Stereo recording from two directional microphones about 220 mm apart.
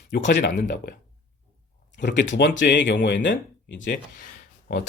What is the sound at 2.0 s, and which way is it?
Speech, 50° left (ahead or behind).